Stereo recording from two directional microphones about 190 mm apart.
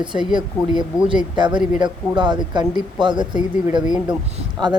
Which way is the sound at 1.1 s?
25° right (ahead or behind).